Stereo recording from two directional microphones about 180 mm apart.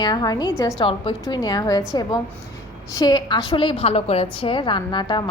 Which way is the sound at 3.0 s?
25° left (ahead or behind).